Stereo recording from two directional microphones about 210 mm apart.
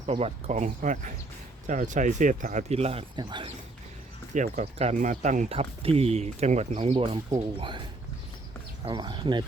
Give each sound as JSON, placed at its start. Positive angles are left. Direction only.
{"t": 0.0, "sound": "speech", "side_deg": -30}
{"t": 4.4, "sound": "speech", "side_deg": -35}
{"t": 8.8, "sound": "speech", "side_deg": -20}